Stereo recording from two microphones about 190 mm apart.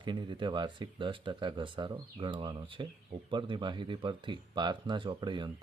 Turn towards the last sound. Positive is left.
turn(degrees=-25)  # may be behind; listen again after turning